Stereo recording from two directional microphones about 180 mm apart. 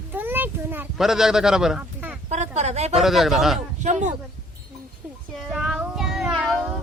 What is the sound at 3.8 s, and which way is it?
Speech, 40° right (ahead or behind).